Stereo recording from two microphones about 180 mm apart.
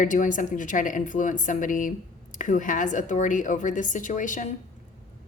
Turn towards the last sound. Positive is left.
turn(degrees=45)  # may be behind; listen again after turning